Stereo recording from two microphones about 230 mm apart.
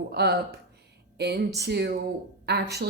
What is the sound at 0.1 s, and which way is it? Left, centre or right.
A woman's voice, right.